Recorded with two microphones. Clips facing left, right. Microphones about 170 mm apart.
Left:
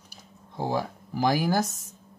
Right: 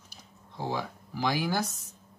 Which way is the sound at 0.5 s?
45° left (ahead or behind).